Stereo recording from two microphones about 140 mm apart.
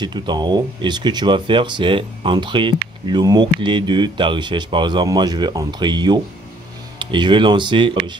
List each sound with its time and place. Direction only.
0.0 s speech: 30° right (ahead or behind)